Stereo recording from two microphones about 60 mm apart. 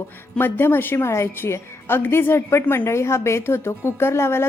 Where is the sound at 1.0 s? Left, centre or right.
Left.